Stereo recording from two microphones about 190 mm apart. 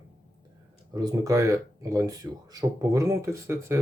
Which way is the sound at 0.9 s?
20° right (ahead or behind).